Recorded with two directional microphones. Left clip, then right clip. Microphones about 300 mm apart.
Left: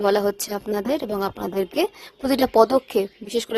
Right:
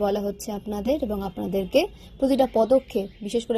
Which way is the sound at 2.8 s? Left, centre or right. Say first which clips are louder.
Left 5 dB; left.